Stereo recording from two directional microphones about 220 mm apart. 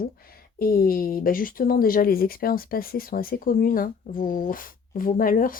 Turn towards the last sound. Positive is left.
turn(degrees=40)  # may be behind; listen again after turning